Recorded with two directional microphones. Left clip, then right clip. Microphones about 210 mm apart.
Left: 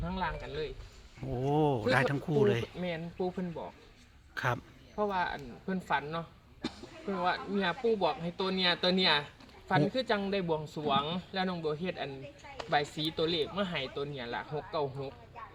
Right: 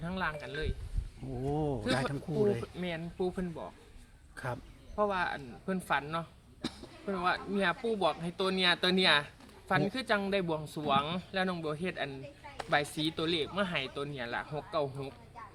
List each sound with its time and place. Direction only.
0.0 s speech: 10° right (ahead or behind)
1.5 s speech: 40° left (ahead or behind)
2.8 s speech: 10° right (ahead or behind)
4.4 s a man's voice: 45° left (ahead or behind)
4.9 s speech: 10° right (ahead or behind)
6.6 s speech: 25° right (ahead or behind)
7.1 s speech: 10° right (ahead or behind)